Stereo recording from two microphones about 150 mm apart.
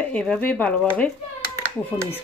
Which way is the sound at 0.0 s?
10° left (ahead or behind).